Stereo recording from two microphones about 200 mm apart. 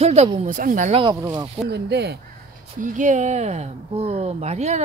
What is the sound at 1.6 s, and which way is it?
Speech, 55° right (ahead or behind).